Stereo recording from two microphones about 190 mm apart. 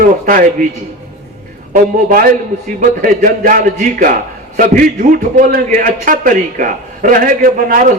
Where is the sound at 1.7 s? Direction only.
50° right (ahead or behind).